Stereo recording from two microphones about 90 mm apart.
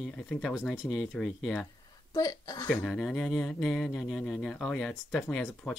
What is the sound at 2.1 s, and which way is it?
Speech, 45° left (ahead or behind).